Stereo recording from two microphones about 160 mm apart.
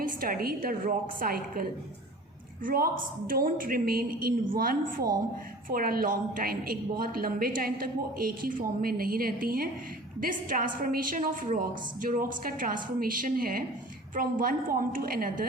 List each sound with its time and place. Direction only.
0.0 s a woman's voice: 65° right (ahead or behind)
2.6 s a woman's voice: 65° right (ahead or behind)